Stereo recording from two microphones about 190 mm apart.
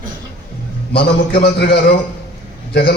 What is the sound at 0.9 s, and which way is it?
A man's voice, 55° left (ahead or behind).